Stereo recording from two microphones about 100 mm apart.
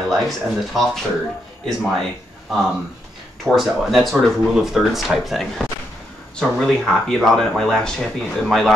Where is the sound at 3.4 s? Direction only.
Centre (ahead or behind).